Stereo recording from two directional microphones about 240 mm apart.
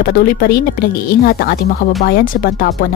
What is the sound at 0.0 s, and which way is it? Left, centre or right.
Speech, left.